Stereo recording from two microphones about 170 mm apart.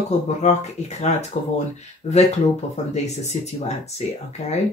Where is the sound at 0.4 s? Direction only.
45° left (ahead or behind).